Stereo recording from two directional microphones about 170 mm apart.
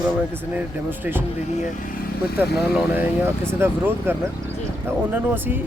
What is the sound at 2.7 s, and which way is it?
Speech, 10° right (ahead or behind).